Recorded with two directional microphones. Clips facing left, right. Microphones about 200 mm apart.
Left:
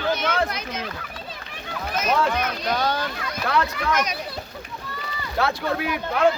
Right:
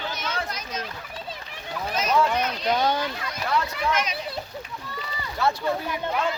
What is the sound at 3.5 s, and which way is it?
Speech, 85° left.